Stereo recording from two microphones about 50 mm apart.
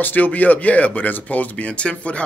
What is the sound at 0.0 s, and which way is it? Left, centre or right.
Speech, left.